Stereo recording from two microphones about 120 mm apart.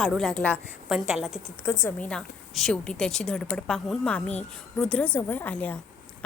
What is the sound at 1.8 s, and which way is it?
A woman's voice, 10° left (ahead or behind).